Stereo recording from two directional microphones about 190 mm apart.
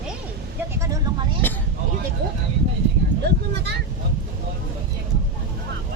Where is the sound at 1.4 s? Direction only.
10° left (ahead or behind).